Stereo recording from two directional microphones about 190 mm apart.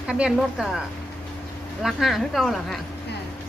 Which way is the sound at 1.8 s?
Centre (ahead or behind).